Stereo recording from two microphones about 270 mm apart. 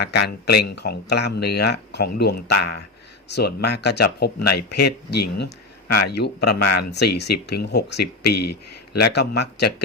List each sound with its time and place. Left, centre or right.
0.0 s speech: left
8.4 s speech: left
9.0 s speech: left